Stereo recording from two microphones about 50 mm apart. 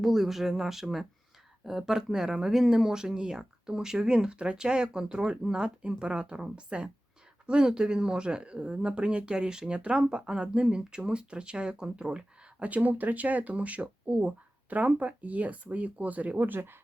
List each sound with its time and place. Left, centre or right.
0.0 s speech: centre; by 16.5 s right
16.5 s speech: right